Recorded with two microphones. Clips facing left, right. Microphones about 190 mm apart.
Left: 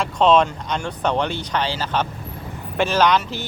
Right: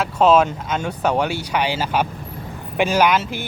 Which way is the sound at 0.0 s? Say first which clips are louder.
Right 1 dB; 5° right (ahead or behind).